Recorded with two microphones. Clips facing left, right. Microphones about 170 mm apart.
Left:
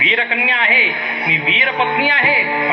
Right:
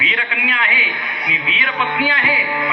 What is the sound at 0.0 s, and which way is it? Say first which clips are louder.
Speech: left 4 dB; 25° left (ahead or behind).